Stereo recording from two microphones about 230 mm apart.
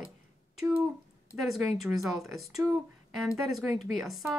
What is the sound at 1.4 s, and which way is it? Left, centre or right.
Speech, centre.